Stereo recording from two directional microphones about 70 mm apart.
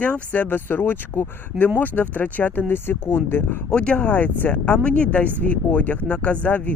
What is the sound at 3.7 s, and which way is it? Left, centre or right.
Speech, centre.